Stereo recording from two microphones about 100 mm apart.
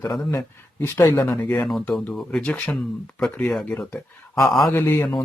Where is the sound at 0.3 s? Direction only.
25° left (ahead or behind).